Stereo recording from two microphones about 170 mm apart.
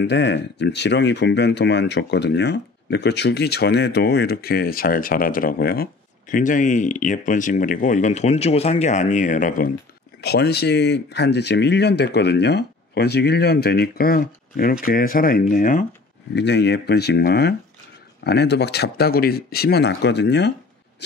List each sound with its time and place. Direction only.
0.0 s speech: 90° left; by 9.7 s 50° left (ahead or behind)
10.2 s speech: 70° left (ahead or behind); by 15.8 s 50° left (ahead or behind)
16.3 s speech: 90° left